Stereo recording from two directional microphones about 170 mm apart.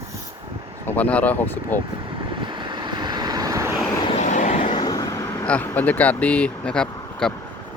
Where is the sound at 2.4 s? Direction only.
25° right (ahead or behind).